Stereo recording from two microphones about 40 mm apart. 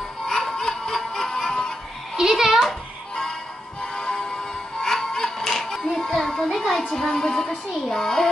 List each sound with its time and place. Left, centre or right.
0.3 s music: centre
2.1 s music: centre
3.8 s music: centre
7.1 s child singing: centre